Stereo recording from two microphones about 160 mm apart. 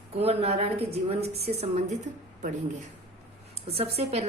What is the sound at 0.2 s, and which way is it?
Speech, 40° right (ahead or behind).